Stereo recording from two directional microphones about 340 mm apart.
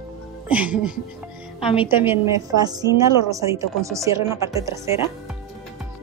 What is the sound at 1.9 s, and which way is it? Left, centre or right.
A woman's voice, centre.